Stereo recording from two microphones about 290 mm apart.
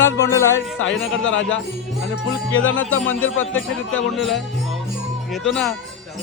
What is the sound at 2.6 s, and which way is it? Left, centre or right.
Speech, left.